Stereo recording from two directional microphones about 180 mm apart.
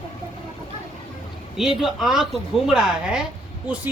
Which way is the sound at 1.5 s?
5° right (ahead or behind).